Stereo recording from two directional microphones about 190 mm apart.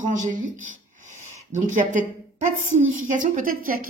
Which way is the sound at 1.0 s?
40° right (ahead or behind).